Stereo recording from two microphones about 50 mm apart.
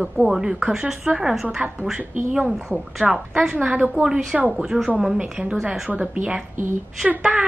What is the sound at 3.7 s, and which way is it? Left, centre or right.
A woman's voice, centre.